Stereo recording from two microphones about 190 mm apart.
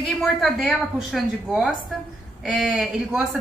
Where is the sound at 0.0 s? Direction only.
Centre (ahead or behind).